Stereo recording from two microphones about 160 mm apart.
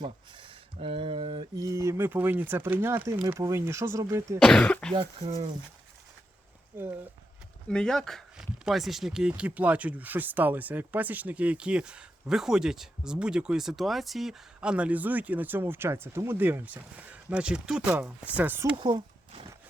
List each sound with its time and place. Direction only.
0.0 s speech: 30° right (ahead or behind)
4.4 s cough: 5° left (ahead or behind)
5.2 s speech: 45° right (ahead or behind)
6.7 s speech: 15° right (ahead or behind)
7.7 s speech: 5° left (ahead or behind); by 18.8 s 10° right (ahead or behind)
18.8 s a sound: 30° right (ahead or behind)